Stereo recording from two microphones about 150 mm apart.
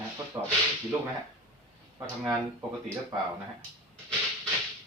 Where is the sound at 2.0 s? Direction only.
20° right (ahead or behind).